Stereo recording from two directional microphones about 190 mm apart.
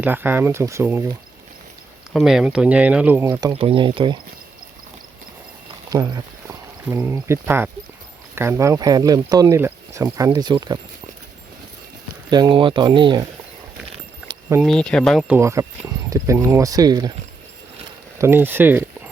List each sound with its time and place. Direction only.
0.0 s speech: 10° right (ahead or behind)
2.1 s speech: centre (ahead or behind)
3.5 s speech: 30° right (ahead or behind)
5.9 s speech: 20° right (ahead or behind)
12.3 s speech: 20° right (ahead or behind)
14.6 s speech: 5° left (ahead or behind)
15.4 s speech: 15° right (ahead or behind)
18.2 s speech: 10° right (ahead or behind)